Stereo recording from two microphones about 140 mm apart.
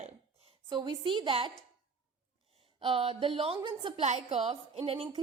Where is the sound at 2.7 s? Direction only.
40° right (ahead or behind).